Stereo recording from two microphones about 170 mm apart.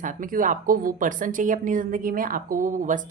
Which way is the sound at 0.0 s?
50° right (ahead or behind).